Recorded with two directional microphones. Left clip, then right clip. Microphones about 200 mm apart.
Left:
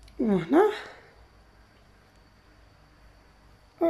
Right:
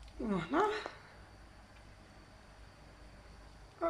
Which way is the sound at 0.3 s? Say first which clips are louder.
Left 10 dB; 35° left (ahead or behind).